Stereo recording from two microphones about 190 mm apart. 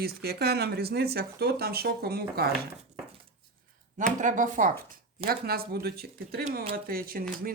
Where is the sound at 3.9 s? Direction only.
40° right (ahead or behind).